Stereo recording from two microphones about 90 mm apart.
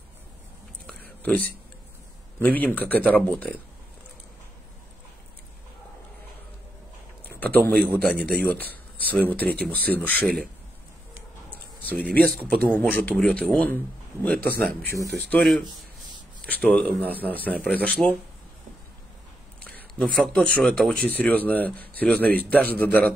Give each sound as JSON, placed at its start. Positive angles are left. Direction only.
{"t": 0.8, "sound": "a sound", "side_deg": 15}
{"t": 2.4, "sound": "speech", "side_deg": 20}
{"t": 7.2, "sound": "a man's voice", "side_deg": 20}
{"t": 10.2, "sound": "speech", "side_deg": 5}
{"t": 11.8, "sound": "speech", "side_deg": 20}
{"t": 16.4, "sound": "speech", "side_deg": 15}
{"t": 20.0, "sound": "speech", "side_deg": 5}